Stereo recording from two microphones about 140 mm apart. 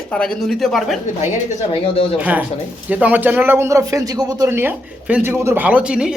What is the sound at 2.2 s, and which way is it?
Speech, 10° right (ahead or behind).